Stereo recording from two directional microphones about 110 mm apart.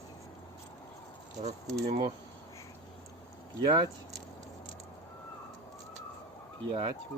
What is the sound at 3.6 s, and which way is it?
Speech, 40° right (ahead or behind).